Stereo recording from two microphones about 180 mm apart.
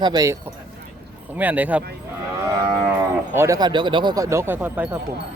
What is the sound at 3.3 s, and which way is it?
Speech, 15° right (ahead or behind).